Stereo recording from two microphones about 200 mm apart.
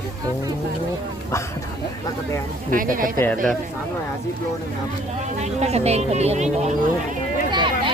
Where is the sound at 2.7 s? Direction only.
45° right (ahead or behind).